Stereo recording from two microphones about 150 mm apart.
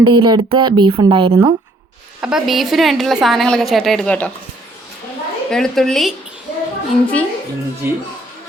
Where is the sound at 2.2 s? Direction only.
5° right (ahead or behind).